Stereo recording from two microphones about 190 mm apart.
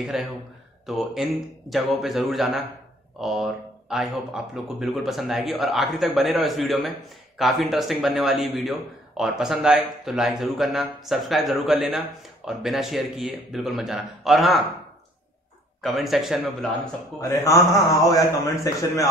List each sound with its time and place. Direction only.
0.0 s speech: centre (ahead or behind)
15.8 s speech: centre (ahead or behind)
17.2 s a man's voice: 15° left (ahead or behind)